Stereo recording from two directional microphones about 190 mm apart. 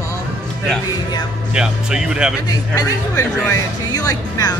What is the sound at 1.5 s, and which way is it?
Speech, 5° right (ahead or behind).